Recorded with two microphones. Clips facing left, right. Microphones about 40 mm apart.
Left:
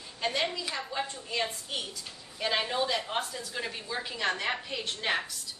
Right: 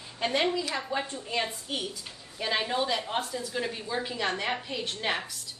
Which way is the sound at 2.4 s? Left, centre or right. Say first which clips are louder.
Right 1 dB; centre.